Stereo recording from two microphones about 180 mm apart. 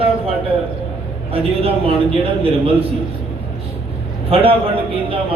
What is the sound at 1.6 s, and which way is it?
A man's voice, 30° right (ahead or behind).